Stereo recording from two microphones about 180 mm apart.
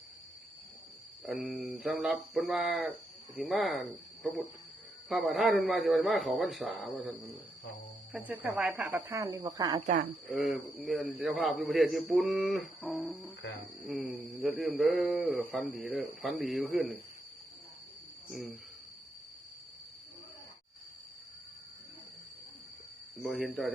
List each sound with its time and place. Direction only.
1.2 s a man's voice: centre (ahead or behind)
8.3 s speech: 5° right (ahead or behind); by 9.8 s 20° right (ahead or behind)
9.8 s speech: 45° right (ahead or behind)
10.2 s a man's voice: centre (ahead or behind)
23.1 s a man's voice: centre (ahead or behind)